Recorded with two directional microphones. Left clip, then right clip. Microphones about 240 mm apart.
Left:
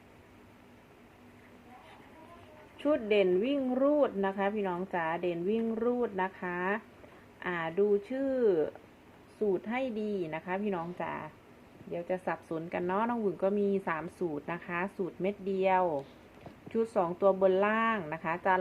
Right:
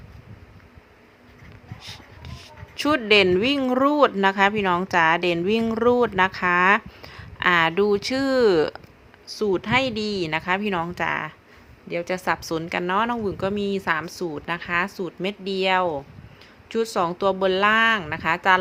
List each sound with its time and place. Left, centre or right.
2.7 s speech: right